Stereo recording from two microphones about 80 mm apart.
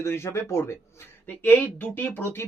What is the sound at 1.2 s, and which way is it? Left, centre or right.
Speech, left.